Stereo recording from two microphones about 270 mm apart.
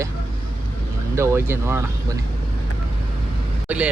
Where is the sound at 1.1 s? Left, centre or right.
Centre.